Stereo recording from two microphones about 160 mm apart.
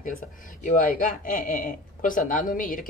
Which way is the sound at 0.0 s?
55° left (ahead or behind).